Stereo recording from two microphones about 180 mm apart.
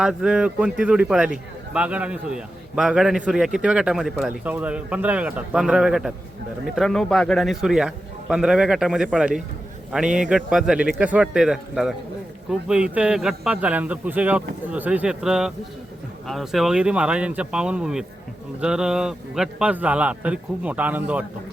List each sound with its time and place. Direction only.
0.0 s a man's voice: 5° right (ahead or behind)